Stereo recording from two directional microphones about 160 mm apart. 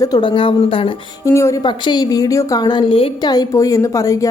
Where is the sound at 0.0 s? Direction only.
25° left (ahead or behind).